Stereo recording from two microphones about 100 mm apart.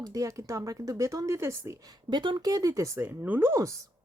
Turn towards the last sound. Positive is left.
turn(degrees=-30)  # may be behind; listen again after turning